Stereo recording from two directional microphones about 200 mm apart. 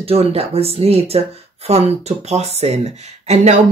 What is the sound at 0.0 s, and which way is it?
Speech, 30° right (ahead or behind).